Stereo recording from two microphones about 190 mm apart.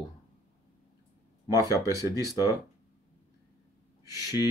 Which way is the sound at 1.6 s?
20° left (ahead or behind).